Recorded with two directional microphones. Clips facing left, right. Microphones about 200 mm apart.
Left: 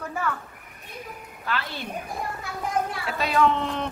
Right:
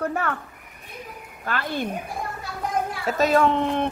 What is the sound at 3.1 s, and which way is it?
Speech, 45° right (ahead or behind).